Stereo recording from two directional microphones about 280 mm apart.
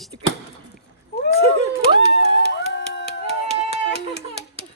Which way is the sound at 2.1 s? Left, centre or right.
Left.